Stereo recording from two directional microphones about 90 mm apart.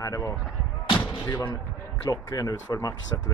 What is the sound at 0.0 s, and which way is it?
Speech, 35° left (ahead or behind).